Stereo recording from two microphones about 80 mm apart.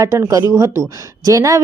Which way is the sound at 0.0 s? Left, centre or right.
Right.